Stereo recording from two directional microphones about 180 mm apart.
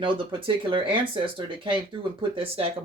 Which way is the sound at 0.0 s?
30° right (ahead or behind).